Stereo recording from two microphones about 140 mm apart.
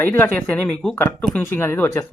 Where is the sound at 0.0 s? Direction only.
15° left (ahead or behind).